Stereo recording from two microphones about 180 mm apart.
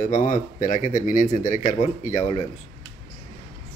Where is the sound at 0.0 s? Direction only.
45° left (ahead or behind).